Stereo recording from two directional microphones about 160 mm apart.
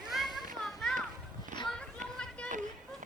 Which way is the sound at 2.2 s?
5° left (ahead or behind).